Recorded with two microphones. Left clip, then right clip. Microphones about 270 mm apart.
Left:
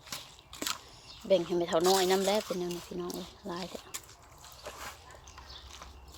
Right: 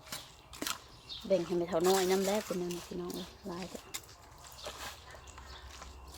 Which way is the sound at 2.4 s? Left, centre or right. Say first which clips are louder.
Left 2 dB; centre.